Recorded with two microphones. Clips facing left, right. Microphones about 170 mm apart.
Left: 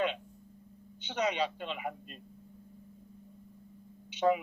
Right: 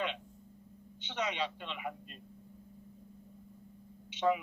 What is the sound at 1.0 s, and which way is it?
Speech, 40° left (ahead or behind).